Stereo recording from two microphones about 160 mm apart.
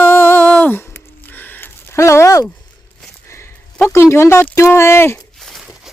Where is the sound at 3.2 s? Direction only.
15° left (ahead or behind).